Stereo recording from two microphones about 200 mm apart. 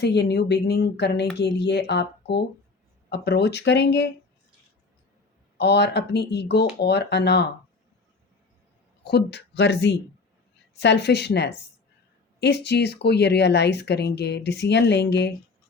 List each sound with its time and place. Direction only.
0.0 s speech: 55° left (ahead or behind)
5.5 s speech: 55° left (ahead or behind)
9.0 s speech: 55° left (ahead or behind)